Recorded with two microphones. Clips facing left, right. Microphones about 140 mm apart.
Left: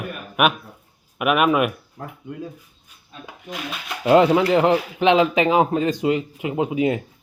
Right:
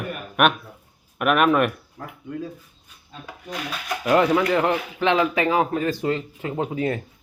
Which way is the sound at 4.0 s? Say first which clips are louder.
Left 4 dB; 25° left (ahead or behind).